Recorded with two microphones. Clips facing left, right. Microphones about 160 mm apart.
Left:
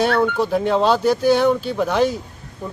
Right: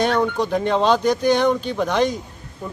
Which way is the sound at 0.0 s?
5° left (ahead or behind).